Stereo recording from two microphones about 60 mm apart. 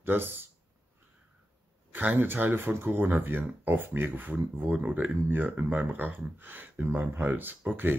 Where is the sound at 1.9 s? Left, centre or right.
Right.